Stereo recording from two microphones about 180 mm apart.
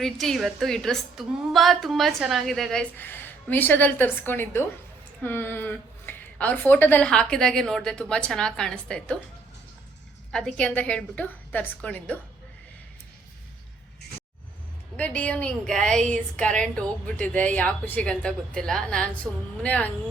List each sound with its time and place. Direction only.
0.0 s a woman's voice: centre (ahead or behind)
10.3 s a woman's voice: 5° left (ahead or behind)
14.9 s a woman's voice: 5° left (ahead or behind)